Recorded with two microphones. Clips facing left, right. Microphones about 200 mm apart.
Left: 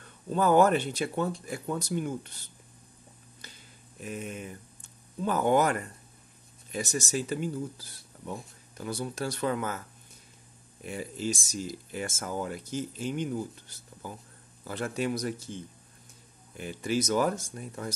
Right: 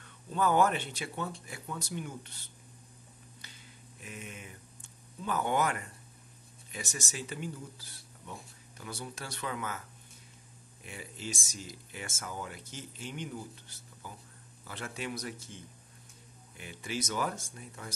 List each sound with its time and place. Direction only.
0.3 s speech: 40° left (ahead or behind)
4.0 s speech: 40° left (ahead or behind)
10.8 s speech: 40° left (ahead or behind)
14.7 s speech: 40° left (ahead or behind)